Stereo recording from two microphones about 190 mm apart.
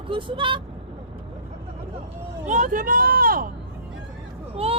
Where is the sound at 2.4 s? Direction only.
40° right (ahead or behind).